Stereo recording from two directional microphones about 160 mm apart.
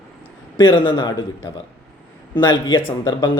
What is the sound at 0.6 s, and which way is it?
Speech, 30° left (ahead or behind).